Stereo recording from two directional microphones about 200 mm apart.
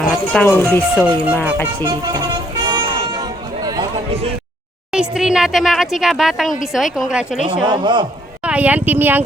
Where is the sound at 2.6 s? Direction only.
20° right (ahead or behind).